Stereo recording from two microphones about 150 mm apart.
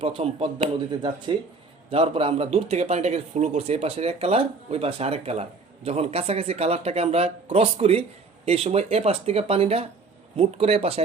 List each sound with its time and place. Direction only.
0.0 s a man's voice: 40° right (ahead or behind)